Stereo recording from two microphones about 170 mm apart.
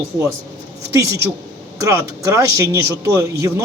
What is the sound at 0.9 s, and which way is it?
Speech, 15° right (ahead or behind).